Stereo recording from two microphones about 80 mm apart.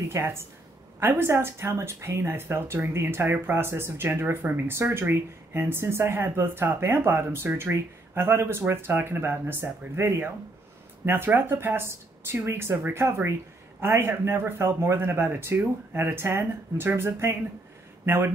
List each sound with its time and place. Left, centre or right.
0.1 s speech: right